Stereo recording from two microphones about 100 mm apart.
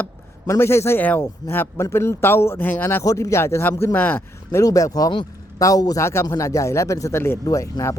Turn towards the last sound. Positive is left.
turn(degrees=35)  # may be behind; listen again after turning